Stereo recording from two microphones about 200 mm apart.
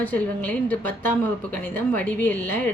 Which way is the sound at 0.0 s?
10° left (ahead or behind).